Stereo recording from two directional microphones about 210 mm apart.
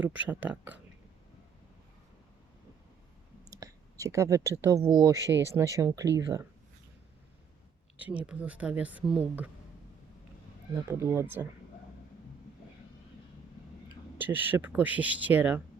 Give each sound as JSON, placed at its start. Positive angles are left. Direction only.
{"t": 0.3, "sound": "speech", "side_deg": -10}
{"t": 3.5, "sound": "speech", "side_deg": -15}
{"t": 7.9, "sound": "speech", "side_deg": -10}
{"t": 10.8, "sound": "speech", "side_deg": -10}
{"t": 13.8, "sound": "speech", "side_deg": -10}